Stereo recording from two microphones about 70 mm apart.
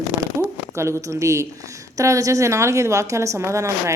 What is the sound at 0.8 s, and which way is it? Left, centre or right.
A woman's voice, right.